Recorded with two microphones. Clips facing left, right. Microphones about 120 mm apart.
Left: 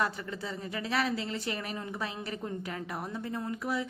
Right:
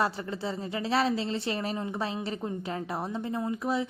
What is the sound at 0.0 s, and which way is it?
A woman's voice, 30° right (ahead or behind).